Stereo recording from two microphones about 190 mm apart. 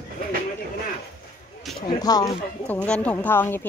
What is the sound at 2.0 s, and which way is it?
Speech, 20° left (ahead or behind).